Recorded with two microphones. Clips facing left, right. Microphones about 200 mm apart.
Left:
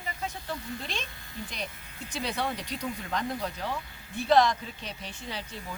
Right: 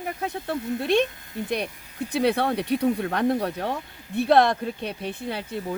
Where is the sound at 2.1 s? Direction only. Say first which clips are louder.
Right 10 dB; 60° right (ahead or behind).